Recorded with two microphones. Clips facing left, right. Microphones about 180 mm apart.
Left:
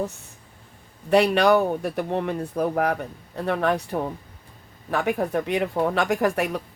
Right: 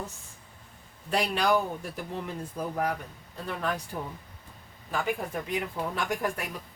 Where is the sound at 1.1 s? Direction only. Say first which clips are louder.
Left 8 dB; 70° left (ahead or behind).